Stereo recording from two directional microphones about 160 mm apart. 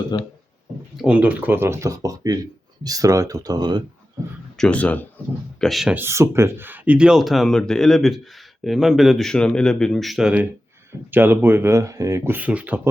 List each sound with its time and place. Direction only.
0.1 s speech: 30° left (ahead or behind)
1.0 s speech: 10° right (ahead or behind); by 3.8 s 25° right (ahead or behind)
4.5 s speech: 5° left (ahead or behind)
6.0 s speech: 15° right (ahead or behind)